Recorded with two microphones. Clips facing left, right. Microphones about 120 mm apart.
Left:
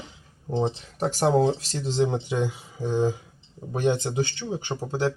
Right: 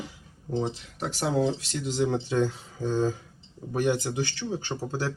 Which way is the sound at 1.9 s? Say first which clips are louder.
Left 2 dB; 25° left (ahead or behind).